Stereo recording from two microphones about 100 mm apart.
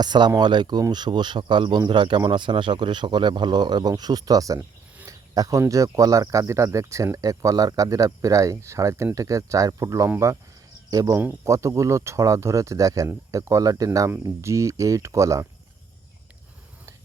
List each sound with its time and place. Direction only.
0.0 s a man's voice: 45° right (ahead or behind)